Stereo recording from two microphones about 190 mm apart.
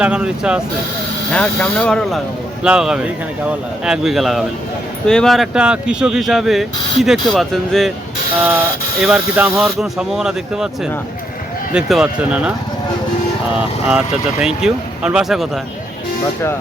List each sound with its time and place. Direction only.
0.0 s speech: 5° right (ahead or behind)
11.7 s speech: 5° right (ahead or behind)
13.6 s speech: 5° right (ahead or behind)